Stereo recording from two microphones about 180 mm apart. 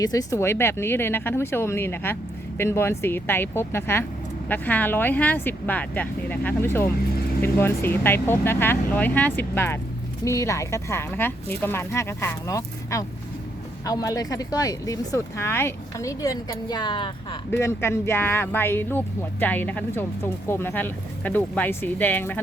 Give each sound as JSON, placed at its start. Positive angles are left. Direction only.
{"t": 0.0, "sound": "speech", "side_deg": 20}
{"t": 17.6, "sound": "speech", "side_deg": 15}